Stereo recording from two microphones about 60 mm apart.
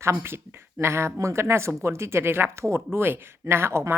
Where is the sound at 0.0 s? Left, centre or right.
Right.